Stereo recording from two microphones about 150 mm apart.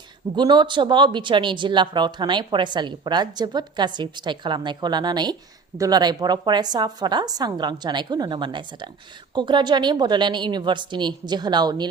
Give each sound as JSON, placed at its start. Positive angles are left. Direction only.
{"t": 0.3, "sound": "a woman's voice", "side_deg": -30}